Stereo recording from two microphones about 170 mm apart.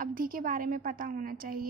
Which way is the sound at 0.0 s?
55° right (ahead or behind).